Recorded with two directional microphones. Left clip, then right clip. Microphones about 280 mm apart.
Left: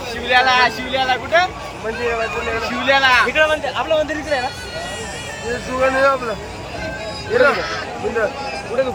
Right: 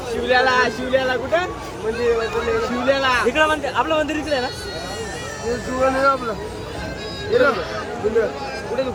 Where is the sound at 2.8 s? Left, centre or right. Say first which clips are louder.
Left 6 dB; right.